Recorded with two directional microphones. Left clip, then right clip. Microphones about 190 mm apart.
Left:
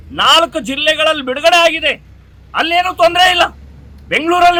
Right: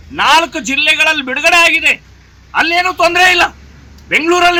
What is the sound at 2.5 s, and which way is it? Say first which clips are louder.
A man's voice: right 2 dB; 30° left (ahead or behind).